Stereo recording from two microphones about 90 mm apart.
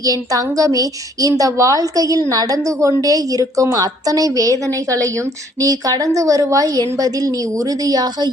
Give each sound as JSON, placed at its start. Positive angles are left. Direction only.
{"t": 0.0, "sound": "a woman's voice", "side_deg": -40}